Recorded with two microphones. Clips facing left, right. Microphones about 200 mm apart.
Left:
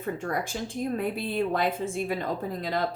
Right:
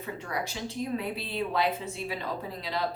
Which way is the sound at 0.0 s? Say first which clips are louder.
Left 4 dB; 50° left (ahead or behind).